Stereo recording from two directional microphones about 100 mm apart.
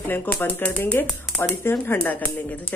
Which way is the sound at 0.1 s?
20° left (ahead or behind).